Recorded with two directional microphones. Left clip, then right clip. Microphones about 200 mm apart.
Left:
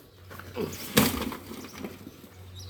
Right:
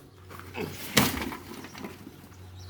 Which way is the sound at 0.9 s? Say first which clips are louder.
Even; centre (ahead or behind).